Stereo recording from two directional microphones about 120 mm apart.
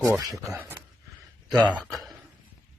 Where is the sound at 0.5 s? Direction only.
15° right (ahead or behind).